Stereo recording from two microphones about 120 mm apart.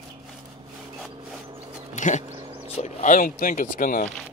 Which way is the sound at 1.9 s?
90° left.